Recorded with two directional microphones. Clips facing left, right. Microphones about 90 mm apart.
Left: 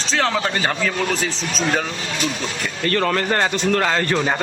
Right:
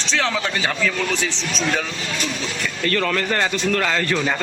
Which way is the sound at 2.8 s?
35° left (ahead or behind).